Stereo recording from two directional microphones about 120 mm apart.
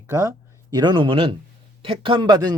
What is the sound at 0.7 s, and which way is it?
Speech, 40° right (ahead or behind).